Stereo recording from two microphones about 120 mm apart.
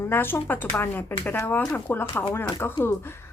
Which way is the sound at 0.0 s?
15° left (ahead or behind).